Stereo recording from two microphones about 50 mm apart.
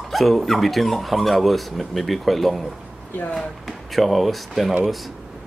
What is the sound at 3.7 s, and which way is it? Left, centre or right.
Speech, centre.